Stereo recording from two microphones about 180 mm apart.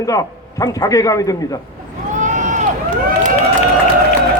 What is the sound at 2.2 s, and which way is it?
Run, 45° right (ahead or behind).